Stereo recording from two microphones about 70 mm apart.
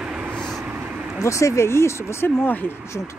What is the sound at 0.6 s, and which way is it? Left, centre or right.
Vehicle, right.